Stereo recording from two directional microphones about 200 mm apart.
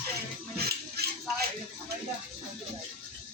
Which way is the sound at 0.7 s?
50° right (ahead or behind).